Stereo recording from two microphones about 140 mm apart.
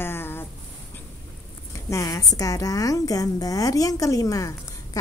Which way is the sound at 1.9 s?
20° left (ahead or behind).